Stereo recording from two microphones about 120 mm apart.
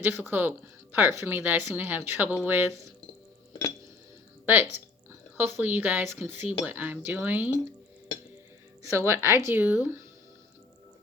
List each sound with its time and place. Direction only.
0.0 s a woman's voice: 15° right (ahead or behind)
5.4 s a woman's voice: 15° right (ahead or behind)
8.8 s speech: 25° right (ahead or behind)